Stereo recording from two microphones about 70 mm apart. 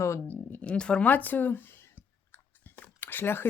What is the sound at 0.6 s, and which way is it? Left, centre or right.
Clicking, centre.